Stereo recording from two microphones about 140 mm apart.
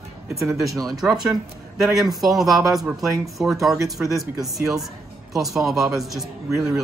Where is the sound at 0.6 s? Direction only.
25° right (ahead or behind).